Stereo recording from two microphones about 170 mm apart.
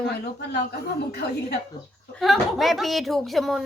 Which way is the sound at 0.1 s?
75° left (ahead or behind).